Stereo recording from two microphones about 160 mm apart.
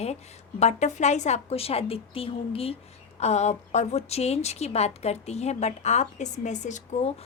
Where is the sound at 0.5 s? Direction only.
45° left (ahead or behind).